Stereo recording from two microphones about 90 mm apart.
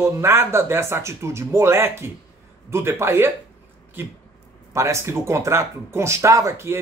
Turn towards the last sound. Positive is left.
turn(degrees=-30)  # may be behind; listen again after turning